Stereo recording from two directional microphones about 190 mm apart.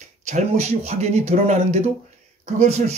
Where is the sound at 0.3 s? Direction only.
35° right (ahead or behind).